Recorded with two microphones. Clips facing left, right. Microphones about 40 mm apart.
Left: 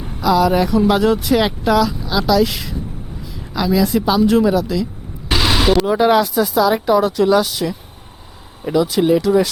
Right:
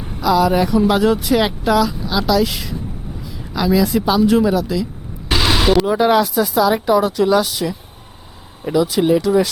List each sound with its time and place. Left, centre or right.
0.0 s speech: centre